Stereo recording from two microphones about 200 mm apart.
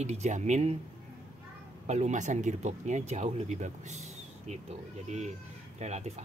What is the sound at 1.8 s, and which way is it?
Speech, 35° right (ahead or behind).